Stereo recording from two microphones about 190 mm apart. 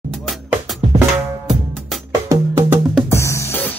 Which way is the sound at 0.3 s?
Centre (ahead or behind).